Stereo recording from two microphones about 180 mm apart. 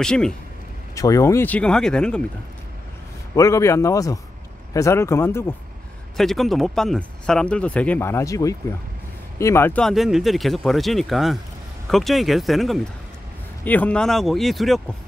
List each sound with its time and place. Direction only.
0.0 s speech: 5° left (ahead or behind)
0.9 s speech: 20° left (ahead or behind)
3.3 s speech: 15° left (ahead or behind)
6.1 s speech: centre (ahead or behind)